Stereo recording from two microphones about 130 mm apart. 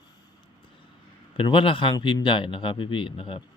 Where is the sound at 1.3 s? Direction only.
40° left (ahead or behind).